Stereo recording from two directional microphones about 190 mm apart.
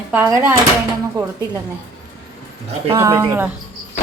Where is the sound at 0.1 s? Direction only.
10° right (ahead or behind).